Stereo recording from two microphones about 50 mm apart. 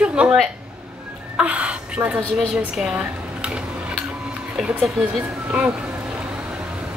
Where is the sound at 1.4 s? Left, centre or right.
Right.